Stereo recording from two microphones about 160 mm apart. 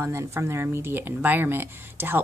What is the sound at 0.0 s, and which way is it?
A woman's voice, 15° right (ahead or behind).